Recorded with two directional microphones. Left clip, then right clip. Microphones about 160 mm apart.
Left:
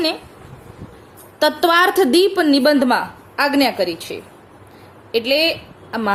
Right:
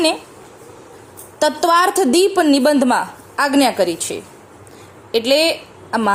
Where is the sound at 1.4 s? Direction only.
15° right (ahead or behind).